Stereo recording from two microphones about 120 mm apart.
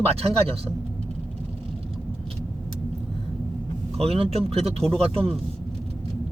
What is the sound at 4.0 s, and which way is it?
Speech, 55° right (ahead or behind).